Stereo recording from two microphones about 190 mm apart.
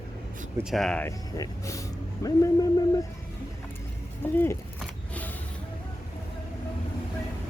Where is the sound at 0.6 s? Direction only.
Centre (ahead or behind).